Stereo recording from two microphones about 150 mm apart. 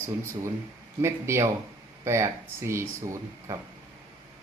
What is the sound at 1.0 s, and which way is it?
Speech, 20° right (ahead or behind).